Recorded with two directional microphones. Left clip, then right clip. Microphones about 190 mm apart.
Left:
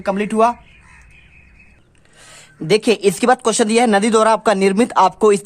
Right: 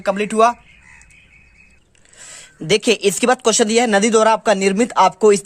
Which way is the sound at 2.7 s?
15° right (ahead or behind).